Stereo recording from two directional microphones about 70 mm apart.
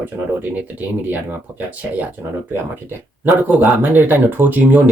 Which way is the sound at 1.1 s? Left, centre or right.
Right.